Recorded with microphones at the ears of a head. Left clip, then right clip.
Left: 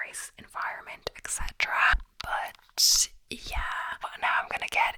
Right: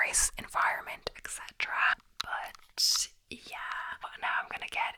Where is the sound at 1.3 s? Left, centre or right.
Left.